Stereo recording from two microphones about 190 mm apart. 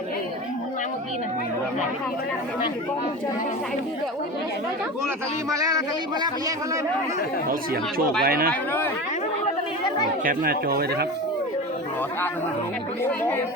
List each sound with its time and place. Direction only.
5.6 s speech: 20° right (ahead or behind)
7.4 s speech: 50° right (ahead or behind)
10.2 s speech: 50° right (ahead or behind)
13.0 s speech: 10° left (ahead or behind)